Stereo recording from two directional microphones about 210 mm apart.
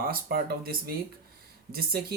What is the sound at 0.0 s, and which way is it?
Speech, 45° right (ahead or behind).